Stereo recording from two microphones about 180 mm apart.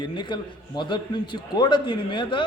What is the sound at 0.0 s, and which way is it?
A man's voice, 25° left (ahead or behind).